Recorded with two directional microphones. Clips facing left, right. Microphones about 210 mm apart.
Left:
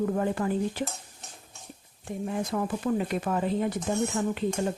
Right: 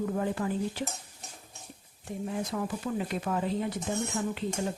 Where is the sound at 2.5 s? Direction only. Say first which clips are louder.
Left 5 dB; 50° left (ahead or behind).